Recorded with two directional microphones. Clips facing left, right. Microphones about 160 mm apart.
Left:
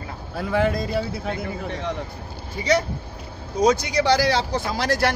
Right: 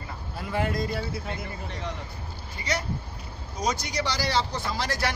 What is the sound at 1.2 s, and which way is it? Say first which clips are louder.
Speech: left 7 dB; 75° left (ahead or behind).